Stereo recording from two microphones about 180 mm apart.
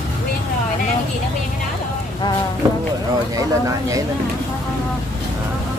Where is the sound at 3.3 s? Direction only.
20° right (ahead or behind).